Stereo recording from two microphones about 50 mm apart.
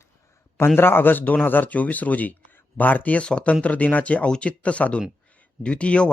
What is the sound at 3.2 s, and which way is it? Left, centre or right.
Speech, left.